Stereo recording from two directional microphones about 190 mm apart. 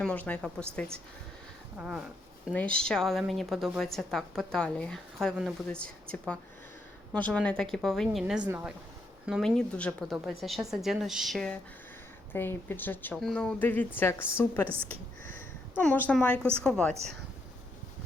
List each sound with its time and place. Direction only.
0.0 s a woman's voice: 10° left (ahead or behind)
1.8 s a woman's voice: 5° right (ahead or behind)
8.4 s speech: 10° right (ahead or behind)
9.2 s a woman's voice: centre (ahead or behind)
15.2 s a sound: 45° right (ahead or behind)
15.8 s a woman's voice: 5° left (ahead or behind)